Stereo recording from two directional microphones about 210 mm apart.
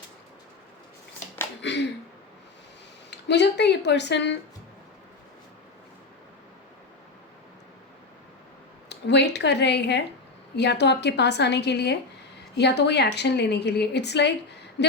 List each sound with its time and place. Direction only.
1.6 s a sound: 55° left (ahead or behind)
3.1 s speech: 55° left (ahead or behind)
8.9 s a woman's voice: 55° left (ahead or behind)